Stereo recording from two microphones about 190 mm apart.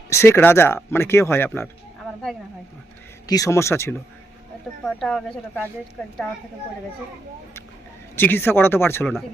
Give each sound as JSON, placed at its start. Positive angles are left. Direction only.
{"t": 0.1, "sound": "speech", "side_deg": 15}
{"t": 3.2, "sound": "speech", "side_deg": 20}
{"t": 4.8, "sound": "speech", "side_deg": 5}
{"t": 8.1, "sound": "speech", "side_deg": 10}